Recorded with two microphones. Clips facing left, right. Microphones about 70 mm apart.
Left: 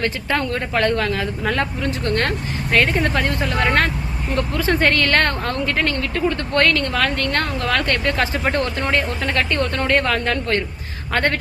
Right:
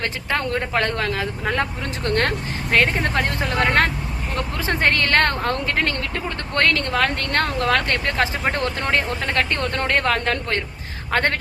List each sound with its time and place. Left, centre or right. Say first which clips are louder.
0.3 s speech: even; right